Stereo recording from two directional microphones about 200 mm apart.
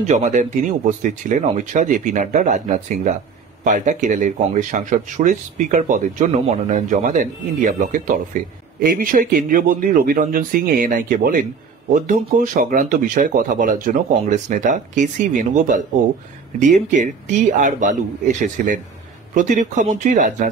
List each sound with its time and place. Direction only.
0.0 s a man's voice: 35° right (ahead or behind)
19.3 s speech: 40° right (ahead or behind)